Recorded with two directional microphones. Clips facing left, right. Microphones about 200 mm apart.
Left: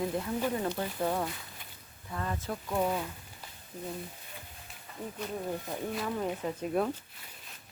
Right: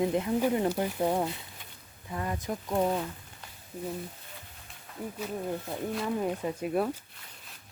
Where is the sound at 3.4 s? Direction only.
5° left (ahead or behind).